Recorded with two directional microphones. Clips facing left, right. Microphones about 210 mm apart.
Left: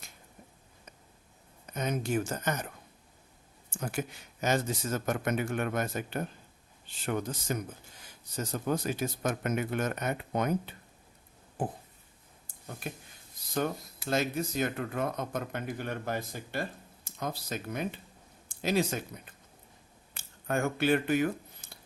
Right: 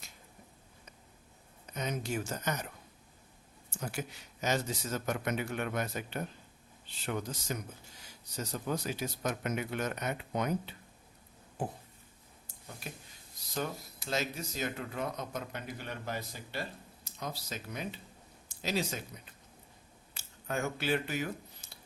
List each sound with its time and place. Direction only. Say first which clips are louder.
1.7 s speech: left 5 dB; 50° left (ahead or behind)
3.7 s speech: left 4 dB; 50° left (ahead or behind)
12.9 s speech: left 6 dB; 55° left (ahead or behind)
14.1 s speech: left 6 dB; 55° left (ahead or behind)
20.1 s a sound: left 5 dB; 55° left (ahead or behind)